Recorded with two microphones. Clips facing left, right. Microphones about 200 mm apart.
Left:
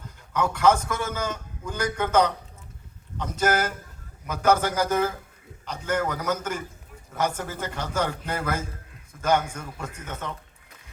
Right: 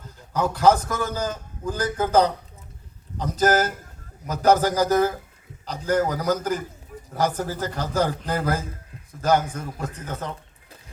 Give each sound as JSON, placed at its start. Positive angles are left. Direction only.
{"t": 0.3, "sound": "a man's voice", "side_deg": -35}